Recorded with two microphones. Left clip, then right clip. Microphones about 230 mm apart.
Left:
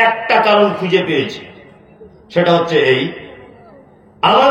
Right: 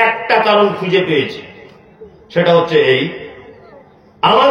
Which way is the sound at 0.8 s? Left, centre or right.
Right.